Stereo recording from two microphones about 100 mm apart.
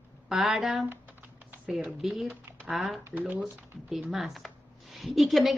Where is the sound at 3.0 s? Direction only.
20° right (ahead or behind).